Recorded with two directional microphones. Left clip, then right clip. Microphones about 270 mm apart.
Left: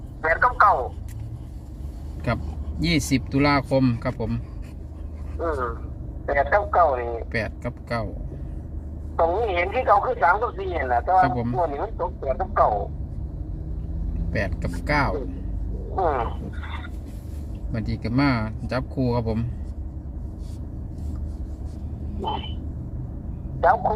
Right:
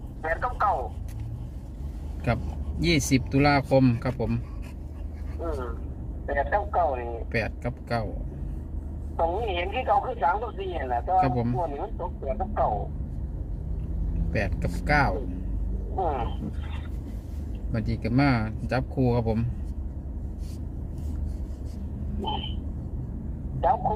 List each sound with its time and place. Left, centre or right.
0.2 s a sound: left
2.8 s speech: centre
5.4 s speech: left
7.3 s speech: centre
9.1 s speech: centre
14.3 s speech: centre
16.0 s speech: left
17.7 s speech: centre
23.6 s speech: left